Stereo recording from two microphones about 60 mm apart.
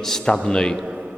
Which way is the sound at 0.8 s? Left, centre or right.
Centre.